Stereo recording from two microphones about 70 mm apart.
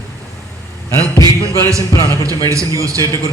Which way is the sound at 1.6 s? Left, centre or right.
Right.